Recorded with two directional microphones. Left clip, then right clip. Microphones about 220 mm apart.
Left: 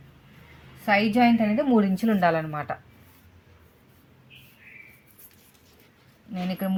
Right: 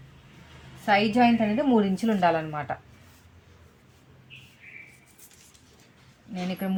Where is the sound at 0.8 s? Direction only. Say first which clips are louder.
Even; 25° left (ahead or behind).